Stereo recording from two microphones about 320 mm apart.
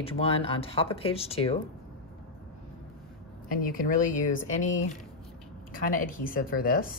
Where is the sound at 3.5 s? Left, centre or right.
Left.